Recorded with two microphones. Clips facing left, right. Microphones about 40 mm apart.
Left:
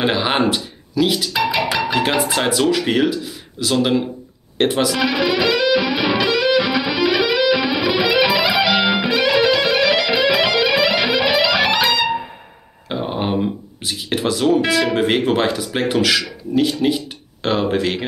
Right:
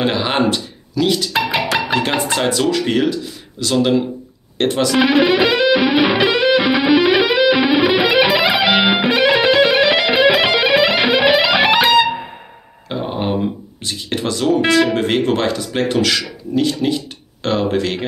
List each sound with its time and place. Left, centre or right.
0.0 s a sound: centre
2.0 s speech: centre
4.9 s music: right
12.9 s speech: centre